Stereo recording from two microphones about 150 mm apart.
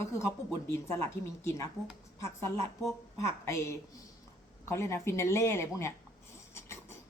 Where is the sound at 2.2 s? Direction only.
20° left (ahead or behind).